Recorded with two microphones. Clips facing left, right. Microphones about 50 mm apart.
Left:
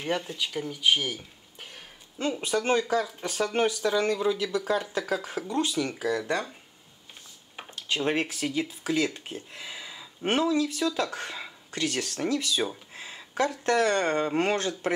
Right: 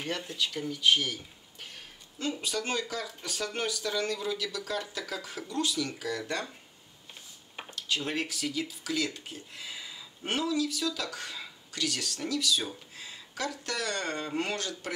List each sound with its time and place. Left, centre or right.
0.4 s speech: centre
2.4 s speech: left
5.9 s speech: centre
7.7 s speech: left
9.7 s a sound: centre
10.2 s speech: left